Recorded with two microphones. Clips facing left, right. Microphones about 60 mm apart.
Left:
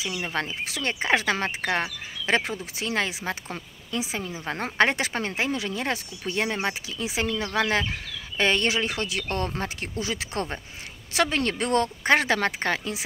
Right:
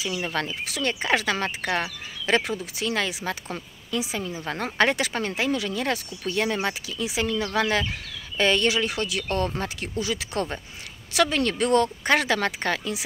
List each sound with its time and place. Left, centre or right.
0.0 s speech: left